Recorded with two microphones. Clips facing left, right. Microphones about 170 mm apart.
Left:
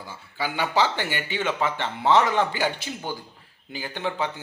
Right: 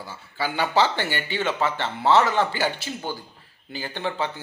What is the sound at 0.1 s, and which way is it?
Speech, 10° left (ahead or behind).